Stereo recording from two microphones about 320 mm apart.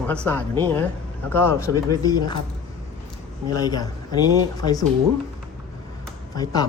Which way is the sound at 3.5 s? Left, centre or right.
Centre.